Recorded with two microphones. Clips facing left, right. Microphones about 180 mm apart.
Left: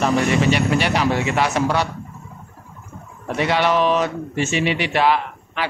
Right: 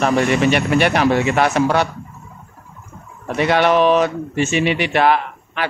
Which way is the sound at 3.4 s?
55° right (ahead or behind).